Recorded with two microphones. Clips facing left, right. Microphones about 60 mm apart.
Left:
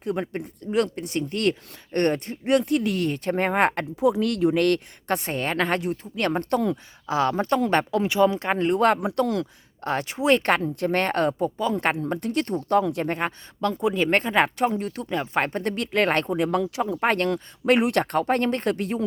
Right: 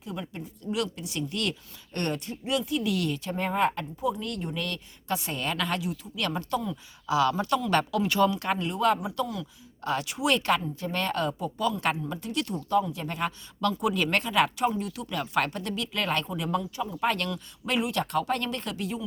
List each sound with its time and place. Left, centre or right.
0.0 s speech: left
2.9 s speech: left
7.1 s speech: left
8.0 s speech: centre
8.3 s speech: left
8.5 s speech: left
9.8 s speech: left
10.4 s speech: left
12.6 s speech: left
13.1 s speech: left
15.1 s speech: left